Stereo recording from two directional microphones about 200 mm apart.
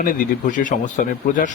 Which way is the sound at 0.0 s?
40° left (ahead or behind).